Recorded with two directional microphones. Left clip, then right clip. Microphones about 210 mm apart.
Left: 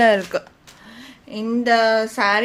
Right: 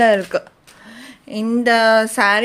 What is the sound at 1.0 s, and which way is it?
Speech, 30° right (ahead or behind).